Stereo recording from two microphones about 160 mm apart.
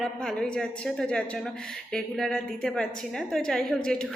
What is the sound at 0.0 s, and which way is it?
A woman's voice, 5° left (ahead or behind).